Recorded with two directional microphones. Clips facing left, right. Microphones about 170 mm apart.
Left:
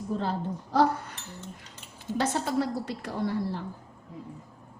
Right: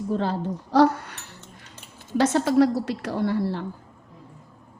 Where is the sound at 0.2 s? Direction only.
90° right.